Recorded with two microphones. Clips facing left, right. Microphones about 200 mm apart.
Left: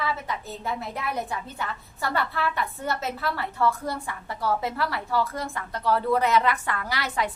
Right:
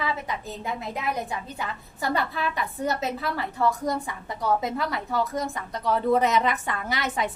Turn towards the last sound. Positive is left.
turn(degrees=-20)  # may be behind; listen again after turning